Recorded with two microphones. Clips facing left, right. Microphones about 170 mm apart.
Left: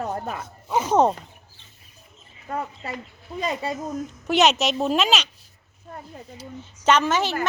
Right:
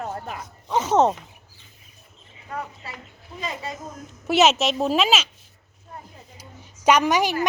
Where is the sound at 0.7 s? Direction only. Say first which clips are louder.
Even; 10° left (ahead or behind).